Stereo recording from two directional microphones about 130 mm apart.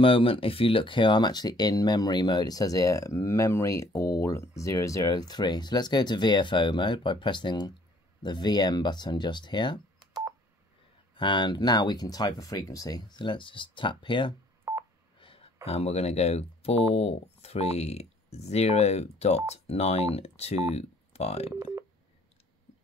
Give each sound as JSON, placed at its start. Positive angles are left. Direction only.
{"t": 0.0, "sound": "speech", "side_deg": 45}
{"t": 11.1, "sound": "speech", "side_deg": 35}
{"t": 14.7, "sound": "telephone dialing", "side_deg": -20}
{"t": 15.1, "sound": "speech", "side_deg": 45}
{"t": 21.5, "sound": "speech", "side_deg": -25}